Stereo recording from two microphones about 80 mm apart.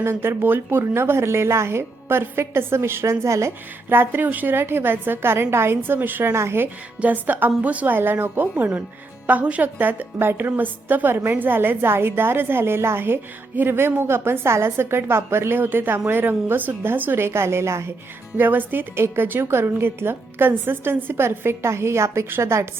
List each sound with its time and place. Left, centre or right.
0.0 s a woman's voice: right
7.0 s a woman's voice: right
18.3 s a woman's voice: right